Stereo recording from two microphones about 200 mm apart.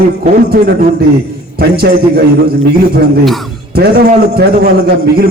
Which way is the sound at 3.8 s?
50° right (ahead or behind).